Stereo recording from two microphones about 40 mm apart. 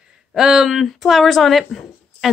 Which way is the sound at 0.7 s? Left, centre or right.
Centre.